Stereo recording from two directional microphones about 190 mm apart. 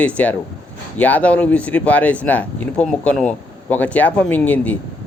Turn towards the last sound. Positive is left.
turn(degrees=10)  # may be behind; listen again after turning